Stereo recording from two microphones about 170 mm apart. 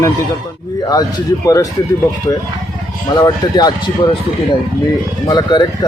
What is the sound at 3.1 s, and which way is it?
Speech, 25° left (ahead or behind).